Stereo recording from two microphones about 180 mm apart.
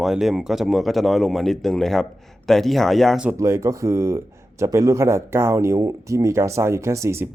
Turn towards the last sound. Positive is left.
turn(degrees=-15)  # may be behind; listen again after turning